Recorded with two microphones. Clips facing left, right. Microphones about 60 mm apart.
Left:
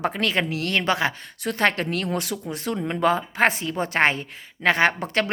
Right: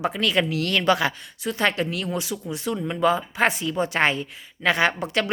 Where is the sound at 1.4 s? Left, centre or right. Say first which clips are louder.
Left 1 dB; left.